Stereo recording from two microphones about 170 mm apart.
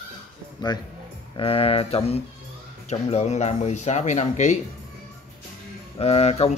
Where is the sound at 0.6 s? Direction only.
25° left (ahead or behind); by 4.6 s 45° left (ahead or behind).